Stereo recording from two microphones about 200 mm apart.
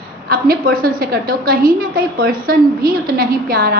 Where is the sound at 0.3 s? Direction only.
45° right (ahead or behind).